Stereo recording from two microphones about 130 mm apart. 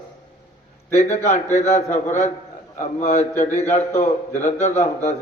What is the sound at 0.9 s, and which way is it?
A man's voice, 65° left (ahead or behind).